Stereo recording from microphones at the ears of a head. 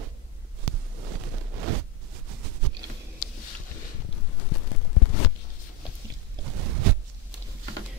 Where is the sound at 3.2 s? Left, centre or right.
Left.